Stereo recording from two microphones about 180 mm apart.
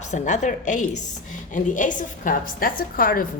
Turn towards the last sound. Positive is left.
turn(degrees=50)  # may be behind; listen again after turning